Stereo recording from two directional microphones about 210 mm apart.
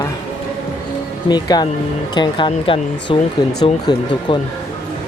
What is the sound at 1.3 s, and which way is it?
Speech, 20° left (ahead or behind).